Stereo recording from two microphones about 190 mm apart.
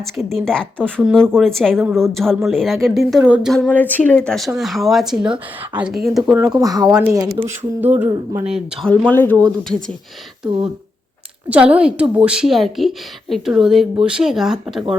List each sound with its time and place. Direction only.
0.4 s speech: 5° left (ahead or behind)
6.3 s speech: 20° right (ahead or behind)
7.9 s speech: 10° right (ahead or behind); by 9.7 s 5° left (ahead or behind)
11.4 s a woman's voice: 5° right (ahead or behind)